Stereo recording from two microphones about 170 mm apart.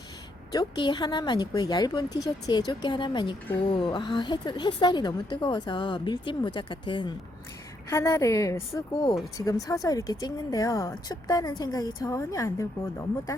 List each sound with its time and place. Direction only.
0.5 s speech: 30° left (ahead or behind)
7.9 s a woman's voice: 15° left (ahead or behind)